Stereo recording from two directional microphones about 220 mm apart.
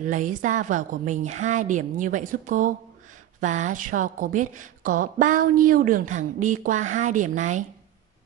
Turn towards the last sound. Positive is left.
turn(degrees=-35)  # may be behind; listen again after turning